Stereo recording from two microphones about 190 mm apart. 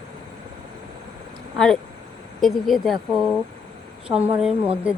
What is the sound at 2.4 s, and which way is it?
Speech, centre (ahead or behind).